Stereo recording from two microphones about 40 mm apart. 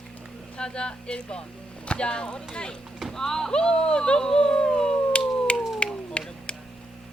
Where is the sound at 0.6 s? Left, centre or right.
Left.